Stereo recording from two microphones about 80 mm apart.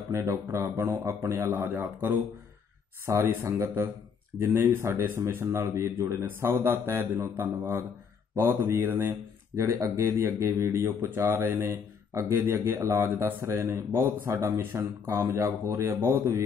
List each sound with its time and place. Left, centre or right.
0.1 s speech: right
3.1 s speech: right
9.6 s speech: right